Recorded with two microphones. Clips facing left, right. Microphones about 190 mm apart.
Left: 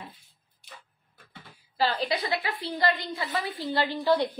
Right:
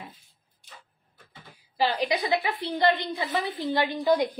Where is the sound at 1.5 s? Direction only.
15° right (ahead or behind).